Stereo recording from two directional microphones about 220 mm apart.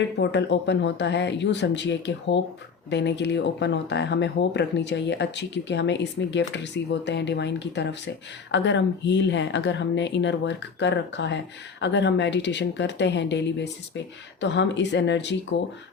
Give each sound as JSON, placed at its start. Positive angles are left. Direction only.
{"t": 0.2, "sound": "speech", "side_deg": 50}